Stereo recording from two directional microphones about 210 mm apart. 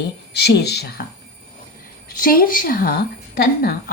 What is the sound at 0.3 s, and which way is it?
Speech, 50° left (ahead or behind).